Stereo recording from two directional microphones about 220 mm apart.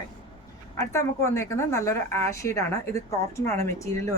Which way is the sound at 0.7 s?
10° left (ahead or behind).